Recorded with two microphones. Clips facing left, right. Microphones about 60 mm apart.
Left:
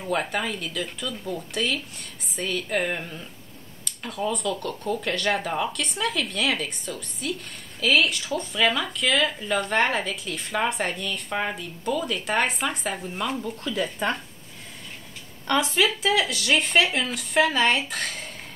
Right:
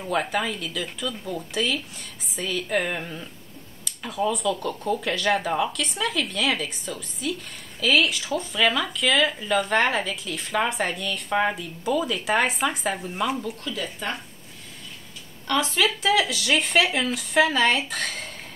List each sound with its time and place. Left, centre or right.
0.0 s speech: centre
15.4 s speech: left
15.8 s speech: centre